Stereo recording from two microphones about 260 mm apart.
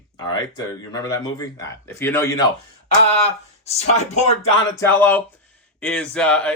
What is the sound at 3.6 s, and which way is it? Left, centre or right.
Speech, left.